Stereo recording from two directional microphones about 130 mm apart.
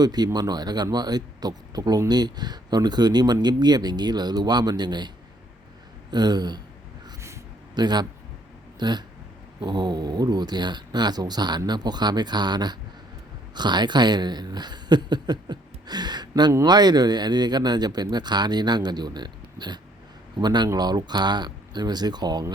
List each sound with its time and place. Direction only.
0.0 s speech: 30° right (ahead or behind)
7.8 s speech: 35° right (ahead or behind)